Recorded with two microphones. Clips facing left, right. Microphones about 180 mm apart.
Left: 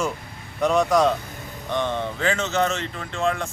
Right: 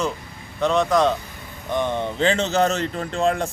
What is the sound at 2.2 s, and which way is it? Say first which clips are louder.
Speech: right 4 dB; 30° right (ahead or behind).